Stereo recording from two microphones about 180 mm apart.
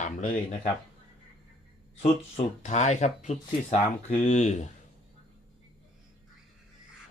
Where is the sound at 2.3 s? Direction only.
40° left (ahead or behind).